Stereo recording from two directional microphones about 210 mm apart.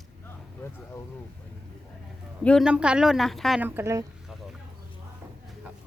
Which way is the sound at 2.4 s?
Centre (ahead or behind).